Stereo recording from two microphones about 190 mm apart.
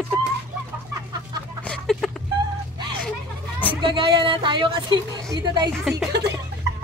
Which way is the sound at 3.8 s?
25° right (ahead or behind).